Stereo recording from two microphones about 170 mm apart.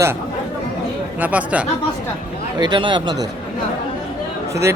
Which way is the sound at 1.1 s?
10° right (ahead or behind).